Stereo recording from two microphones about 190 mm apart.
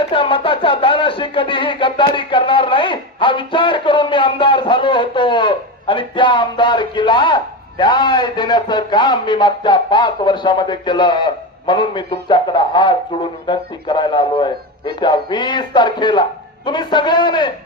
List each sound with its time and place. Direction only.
0.1 s speech: 25° left (ahead or behind)